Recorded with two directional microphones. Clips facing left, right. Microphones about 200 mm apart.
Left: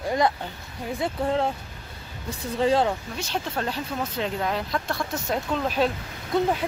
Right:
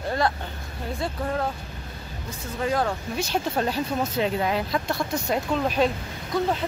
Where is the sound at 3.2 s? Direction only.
10° right (ahead or behind).